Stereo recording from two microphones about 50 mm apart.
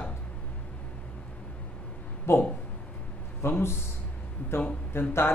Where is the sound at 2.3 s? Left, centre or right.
Left.